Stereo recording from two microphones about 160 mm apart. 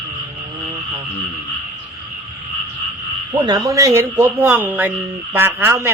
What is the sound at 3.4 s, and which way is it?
A man's voice, 20° right (ahead or behind).